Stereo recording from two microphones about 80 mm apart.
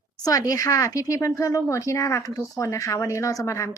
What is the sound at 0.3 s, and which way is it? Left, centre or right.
Speech, left.